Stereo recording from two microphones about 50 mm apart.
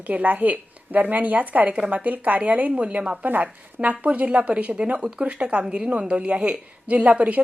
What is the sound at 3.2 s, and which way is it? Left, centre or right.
A woman's voice, right.